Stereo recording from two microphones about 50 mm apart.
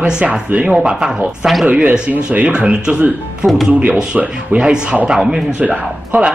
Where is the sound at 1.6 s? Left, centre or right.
Right.